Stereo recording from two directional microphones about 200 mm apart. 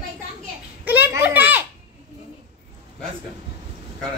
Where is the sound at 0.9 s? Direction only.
10° right (ahead or behind).